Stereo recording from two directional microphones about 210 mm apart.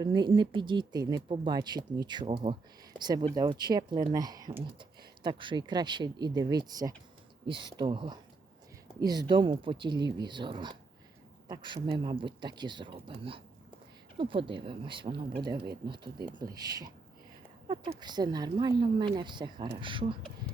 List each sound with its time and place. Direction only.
0.0 s speech: 20° right (ahead or behind)